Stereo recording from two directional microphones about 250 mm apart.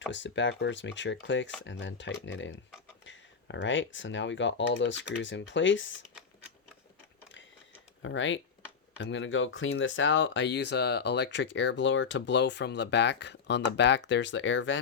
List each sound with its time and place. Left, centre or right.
0.1 s speech: left
8.0 s speech: left